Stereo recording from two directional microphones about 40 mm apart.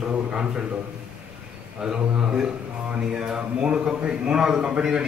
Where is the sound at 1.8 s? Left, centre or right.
Centre.